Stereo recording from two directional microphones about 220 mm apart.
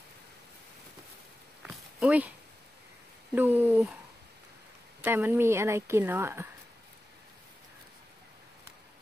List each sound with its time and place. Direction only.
1.6 s a sound: 5° right (ahead or behind)
3.3 s a woman's voice: 10° right (ahead or behind)
5.0 s a woman's voice: 10° right (ahead or behind)